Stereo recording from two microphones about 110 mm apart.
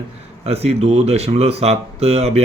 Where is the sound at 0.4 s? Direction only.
70° right (ahead or behind).